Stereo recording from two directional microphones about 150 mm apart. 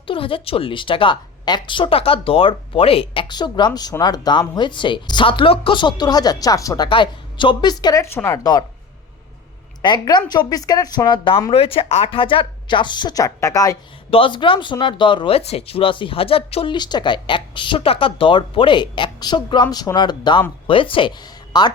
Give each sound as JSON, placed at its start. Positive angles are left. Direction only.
{"t": 0.1, "sound": "a woman's voice", "side_deg": 35}
{"t": 9.8, "sound": "a woman's voice", "side_deg": 30}
{"t": 14.1, "sound": "a woman's voice", "side_deg": 35}
{"t": 16.7, "sound": "a woman's voice", "side_deg": 30}